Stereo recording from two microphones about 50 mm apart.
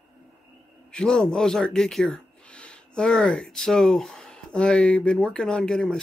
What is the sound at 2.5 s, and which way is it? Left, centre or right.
Speech, left.